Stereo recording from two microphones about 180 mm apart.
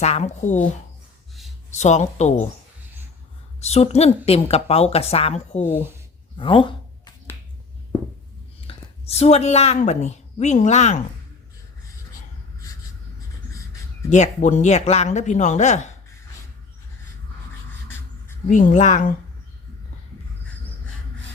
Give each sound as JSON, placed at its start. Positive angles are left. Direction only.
{"t": 0.0, "sound": "speech", "side_deg": 40}
{"t": 1.7, "sound": "speech", "side_deg": 40}
{"t": 3.6, "sound": "speech", "side_deg": 35}
{"t": 6.3, "sound": "a sound", "side_deg": 30}
{"t": 8.6, "sound": "a woman's voice", "side_deg": 35}
{"t": 14.1, "sound": "speech", "side_deg": 40}
{"t": 18.4, "sound": "speech", "side_deg": 45}